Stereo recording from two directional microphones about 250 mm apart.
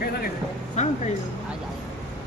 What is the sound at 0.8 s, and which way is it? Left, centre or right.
Speech, left.